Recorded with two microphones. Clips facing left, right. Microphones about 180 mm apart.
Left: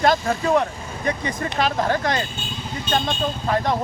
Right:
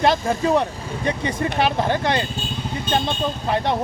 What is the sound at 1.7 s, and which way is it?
Speech, 25° right (ahead or behind).